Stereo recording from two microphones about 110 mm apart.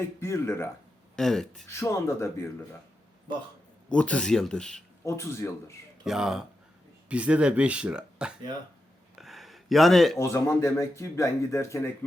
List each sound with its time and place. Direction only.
0.0 s speech: 25° left (ahead or behind)
1.1 s speech: 5° left (ahead or behind)
1.6 s speech: 25° left (ahead or behind)
3.8 s speech: 10° left (ahead or behind)
5.0 s speech: 25° left (ahead or behind)
6.1 s speech: 5° right (ahead or behind)
9.1 s a sound: centre (ahead or behind)
10.2 s speech: 25° left (ahead or behind)